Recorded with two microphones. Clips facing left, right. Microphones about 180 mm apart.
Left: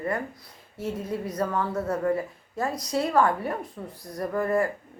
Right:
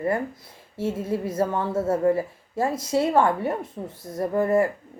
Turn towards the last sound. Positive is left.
turn(degrees=-25)  # may be behind; listen again after turning